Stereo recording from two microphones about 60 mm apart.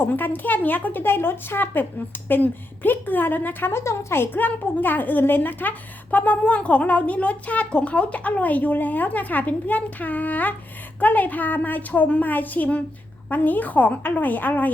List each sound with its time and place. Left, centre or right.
0.0 s speech: left
3.7 s speech: left